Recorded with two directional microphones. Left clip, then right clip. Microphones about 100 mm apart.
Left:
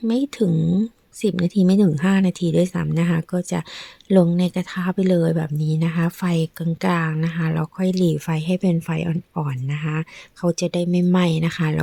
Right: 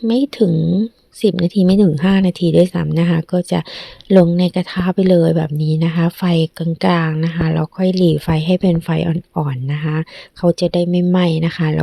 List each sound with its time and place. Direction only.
0.1 s speech: 15° right (ahead or behind)
0.5 s speech: centre (ahead or behind)
1.2 s speech: 10° right (ahead or behind)
8.3 s speech: 20° right (ahead or behind)
10.4 s speech: 5° right (ahead or behind)